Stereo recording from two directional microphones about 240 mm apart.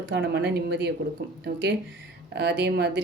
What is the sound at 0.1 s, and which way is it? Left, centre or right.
Speech, right.